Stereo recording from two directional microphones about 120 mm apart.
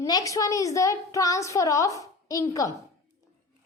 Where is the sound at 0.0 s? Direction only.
30° left (ahead or behind).